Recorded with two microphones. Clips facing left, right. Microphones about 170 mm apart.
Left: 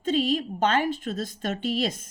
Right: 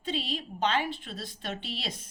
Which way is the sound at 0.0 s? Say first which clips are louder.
Left 10 dB; 45° left (ahead or behind).